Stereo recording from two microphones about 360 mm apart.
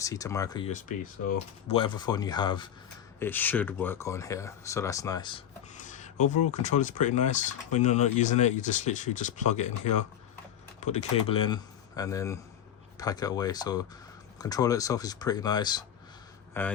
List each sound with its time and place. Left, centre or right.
0.0 s speech: centre
5.8 s a sound: centre
6.5 s speech: centre